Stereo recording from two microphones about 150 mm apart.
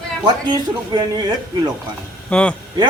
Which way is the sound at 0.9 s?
30° right (ahead or behind).